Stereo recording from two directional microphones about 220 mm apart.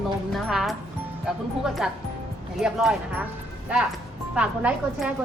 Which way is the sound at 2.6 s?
5° right (ahead or behind).